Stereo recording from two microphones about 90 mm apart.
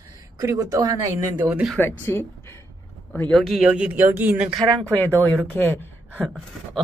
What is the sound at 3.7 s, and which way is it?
Speech, 15° right (ahead or behind).